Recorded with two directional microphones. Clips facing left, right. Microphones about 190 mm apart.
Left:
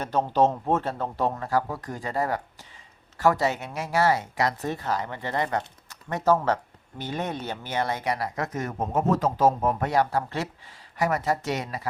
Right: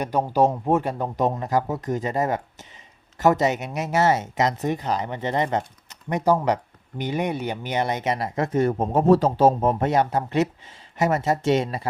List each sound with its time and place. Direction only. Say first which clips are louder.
0.0 s speech: right 2 dB; 10° right (ahead or behind)